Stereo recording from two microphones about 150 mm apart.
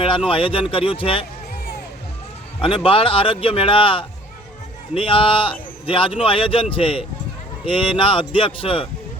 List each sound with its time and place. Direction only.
0.3 s a man's voice: 35° left (ahead or behind)
2.6 s a man's voice: 35° left (ahead or behind)